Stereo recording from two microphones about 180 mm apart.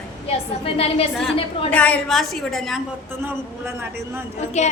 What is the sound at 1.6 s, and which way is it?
A woman's voice, 5° left (ahead or behind).